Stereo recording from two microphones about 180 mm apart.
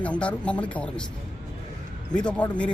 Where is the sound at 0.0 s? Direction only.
5° left (ahead or behind).